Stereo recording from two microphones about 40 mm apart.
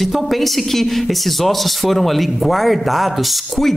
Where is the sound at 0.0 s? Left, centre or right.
Centre.